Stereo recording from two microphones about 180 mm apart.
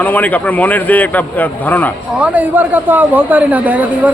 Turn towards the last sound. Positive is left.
turn(degrees=-10)  # may be behind; listen again after turning